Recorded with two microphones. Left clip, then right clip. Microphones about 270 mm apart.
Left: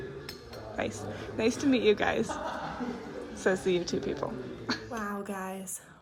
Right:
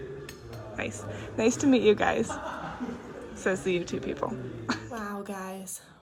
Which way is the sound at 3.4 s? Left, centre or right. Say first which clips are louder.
Even; centre.